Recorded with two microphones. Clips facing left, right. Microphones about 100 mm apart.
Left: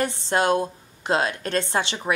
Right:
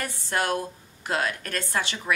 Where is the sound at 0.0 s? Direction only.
25° left (ahead or behind).